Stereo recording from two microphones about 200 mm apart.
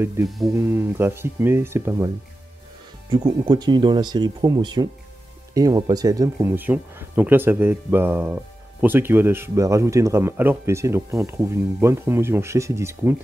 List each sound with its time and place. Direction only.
0.2 s speech: centre (ahead or behind)
0.6 s speech: 10° right (ahead or behind)
3.1 s speech: 20° right (ahead or behind)